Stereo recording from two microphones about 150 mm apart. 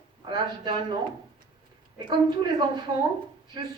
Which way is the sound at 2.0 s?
30° right (ahead or behind).